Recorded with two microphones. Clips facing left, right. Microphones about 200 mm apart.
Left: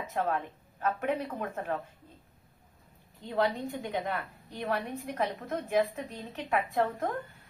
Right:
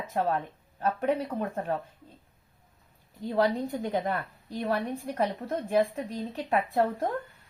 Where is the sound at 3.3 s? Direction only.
35° right (ahead or behind).